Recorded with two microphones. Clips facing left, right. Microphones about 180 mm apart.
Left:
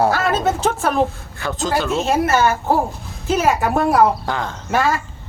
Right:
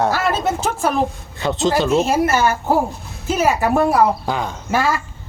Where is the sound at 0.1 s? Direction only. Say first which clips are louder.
Left 1 dB; centre (ahead or behind).